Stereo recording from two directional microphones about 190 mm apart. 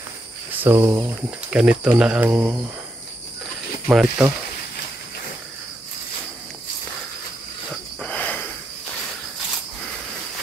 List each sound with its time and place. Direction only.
0.7 s speech: 15° right (ahead or behind)
3.9 s speech: 5° right (ahead or behind)
8.0 s a sound: 10° left (ahead or behind)